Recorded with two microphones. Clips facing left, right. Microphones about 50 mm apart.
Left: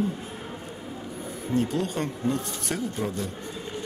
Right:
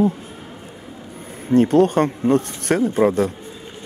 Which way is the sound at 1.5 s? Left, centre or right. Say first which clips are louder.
Right 12 dB; right.